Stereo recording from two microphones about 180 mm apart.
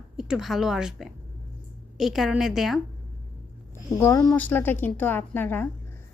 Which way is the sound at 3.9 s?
15° left (ahead or behind).